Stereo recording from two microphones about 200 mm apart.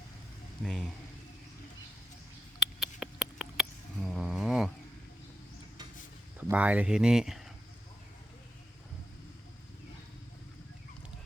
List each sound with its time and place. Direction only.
0.6 s speech: centre (ahead or behind)
2.6 s rodents: centre (ahead or behind)
6.5 s speech: 5° right (ahead or behind)